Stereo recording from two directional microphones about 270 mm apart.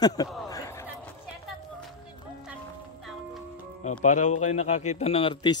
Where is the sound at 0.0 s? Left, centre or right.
Centre.